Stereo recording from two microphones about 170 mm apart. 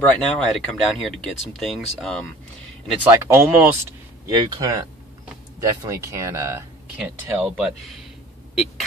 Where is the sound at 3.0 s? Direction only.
15° right (ahead or behind).